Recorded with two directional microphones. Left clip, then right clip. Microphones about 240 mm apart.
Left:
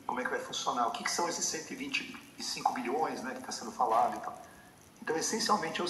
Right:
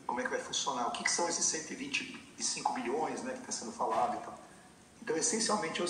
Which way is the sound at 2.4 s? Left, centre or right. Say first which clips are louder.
Left 2 dB; centre.